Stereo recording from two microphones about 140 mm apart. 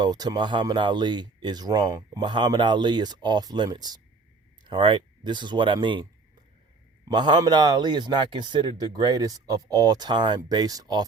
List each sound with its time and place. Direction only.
0.0 s speech: 30° right (ahead or behind)
7.1 s speech: 30° right (ahead or behind)